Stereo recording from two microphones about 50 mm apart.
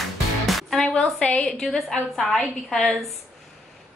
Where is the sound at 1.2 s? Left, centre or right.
Left.